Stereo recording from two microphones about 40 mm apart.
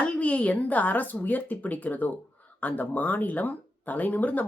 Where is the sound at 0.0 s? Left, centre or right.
Left.